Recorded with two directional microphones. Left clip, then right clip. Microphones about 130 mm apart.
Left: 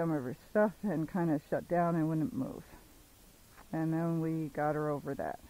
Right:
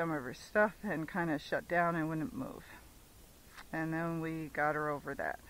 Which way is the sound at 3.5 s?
25° right (ahead or behind).